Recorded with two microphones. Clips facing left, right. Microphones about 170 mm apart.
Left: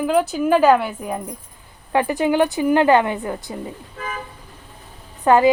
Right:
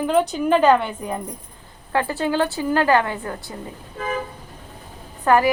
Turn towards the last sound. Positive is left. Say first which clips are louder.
# left 3 dB
turn(degrees=20)  # may be behind; listen again after turning